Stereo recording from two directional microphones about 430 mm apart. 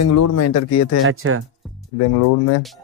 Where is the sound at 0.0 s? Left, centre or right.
Left.